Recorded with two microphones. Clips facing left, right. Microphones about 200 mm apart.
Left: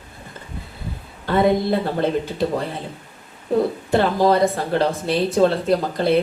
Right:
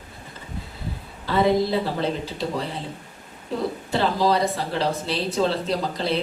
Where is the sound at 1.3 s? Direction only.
55° left (ahead or behind).